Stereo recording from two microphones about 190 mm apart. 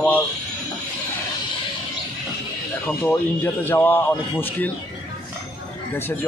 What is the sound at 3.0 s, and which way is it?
Speech, 10° left (ahead or behind).